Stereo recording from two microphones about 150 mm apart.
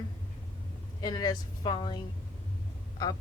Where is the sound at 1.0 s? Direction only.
25° left (ahead or behind).